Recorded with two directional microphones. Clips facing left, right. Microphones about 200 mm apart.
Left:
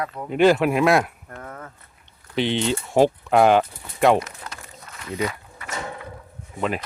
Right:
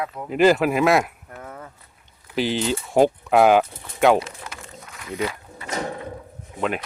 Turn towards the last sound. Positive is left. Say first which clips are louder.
# even
turn(degrees=0)  # may be behind; listen again after turning